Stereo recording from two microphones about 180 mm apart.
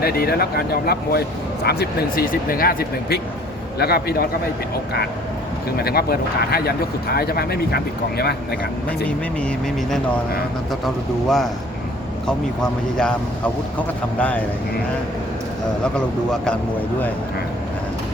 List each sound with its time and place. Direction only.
0.0 s speech: 55° left (ahead or behind)
5.8 s speech: 60° left (ahead or behind)
10.8 s speech: centre (ahead or behind)
12.6 s a man's voice: 5° left (ahead or behind)
15.8 s speech: 5° left (ahead or behind)